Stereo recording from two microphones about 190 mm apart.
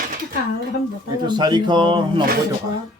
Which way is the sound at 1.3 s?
20° right (ahead or behind).